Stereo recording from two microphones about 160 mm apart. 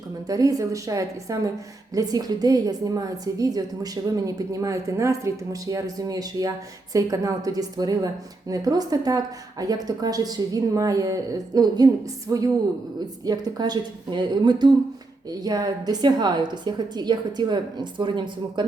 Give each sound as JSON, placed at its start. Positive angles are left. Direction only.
{"t": 0.3, "sound": "a woman's voice", "side_deg": -20}